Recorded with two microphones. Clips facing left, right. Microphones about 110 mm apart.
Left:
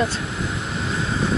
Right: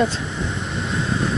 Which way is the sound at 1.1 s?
Centre (ahead or behind).